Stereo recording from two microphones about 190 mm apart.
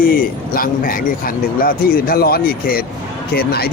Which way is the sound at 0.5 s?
50° left (ahead or behind).